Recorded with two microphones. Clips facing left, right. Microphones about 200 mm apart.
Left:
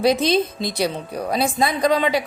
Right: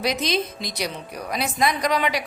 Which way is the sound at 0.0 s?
30° left (ahead or behind).